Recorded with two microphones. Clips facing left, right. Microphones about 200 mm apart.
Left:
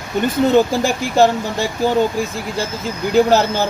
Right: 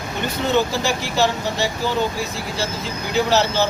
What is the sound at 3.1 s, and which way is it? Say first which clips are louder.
Speech: left 6 dB; 50° left (ahead or behind).